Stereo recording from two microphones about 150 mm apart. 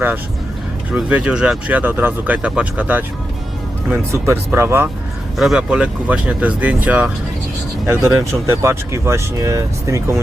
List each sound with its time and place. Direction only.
0.9 s speech: 5° right (ahead or behind)
5.4 s speech: 5° right (ahead or behind); by 10.2 s 20° right (ahead or behind)